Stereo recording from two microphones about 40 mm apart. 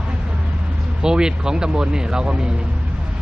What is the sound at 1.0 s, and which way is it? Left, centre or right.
Speech, centre.